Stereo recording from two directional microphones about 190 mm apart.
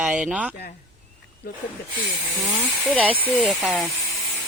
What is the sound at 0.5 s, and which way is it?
Speech, 45° left (ahead or behind).